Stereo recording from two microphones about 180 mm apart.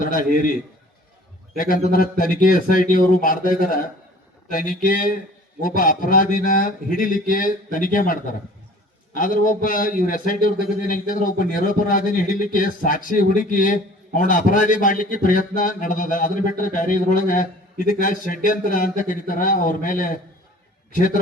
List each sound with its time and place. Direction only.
0.0 s a man's voice: 50° left (ahead or behind)
1.5 s a man's voice: 50° left (ahead or behind)